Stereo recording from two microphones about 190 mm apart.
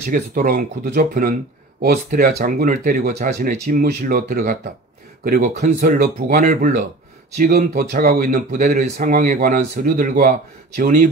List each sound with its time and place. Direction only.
0.0 s speech: 45° right (ahead or behind)
5.8 s speech: 50° right (ahead or behind)